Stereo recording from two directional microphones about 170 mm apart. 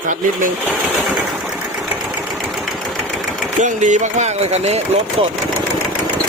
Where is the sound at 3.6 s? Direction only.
45° right (ahead or behind).